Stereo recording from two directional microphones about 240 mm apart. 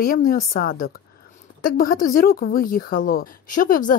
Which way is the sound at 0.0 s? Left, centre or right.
Left.